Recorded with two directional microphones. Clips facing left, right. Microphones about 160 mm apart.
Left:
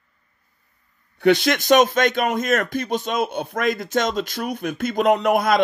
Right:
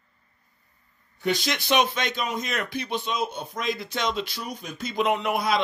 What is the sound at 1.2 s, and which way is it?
Speech, 60° left (ahead or behind).